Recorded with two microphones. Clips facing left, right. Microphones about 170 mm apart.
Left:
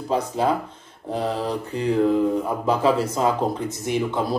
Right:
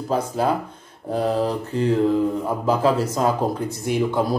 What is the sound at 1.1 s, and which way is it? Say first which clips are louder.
Mantra: right 3 dB; 10° right (ahead or behind).